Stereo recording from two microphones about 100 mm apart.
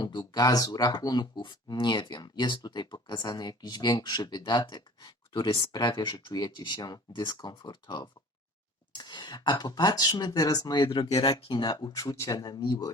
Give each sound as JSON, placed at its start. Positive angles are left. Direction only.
{"t": 0.0, "sound": "speech", "side_deg": 50}
{"t": 10.8, "sound": "speech", "side_deg": 65}
{"t": 11.1, "sound": "speech", "side_deg": 45}
{"t": 11.3, "sound": "speech", "side_deg": 60}
{"t": 11.7, "sound": "speech", "side_deg": 40}